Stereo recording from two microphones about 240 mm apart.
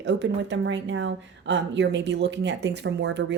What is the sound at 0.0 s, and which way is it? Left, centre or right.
A woman's voice, right.